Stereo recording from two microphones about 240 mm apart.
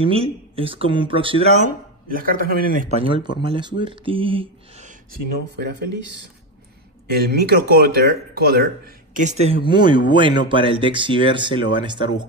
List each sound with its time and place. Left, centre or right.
0.0 s speech: right
3.4 s speech: centre
5.6 s speech: right; by 12.1 s centre